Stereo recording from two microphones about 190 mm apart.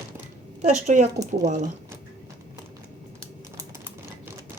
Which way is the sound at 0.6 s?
35° right (ahead or behind).